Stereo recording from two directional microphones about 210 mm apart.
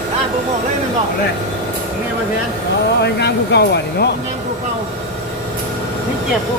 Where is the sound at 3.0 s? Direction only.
55° left (ahead or behind).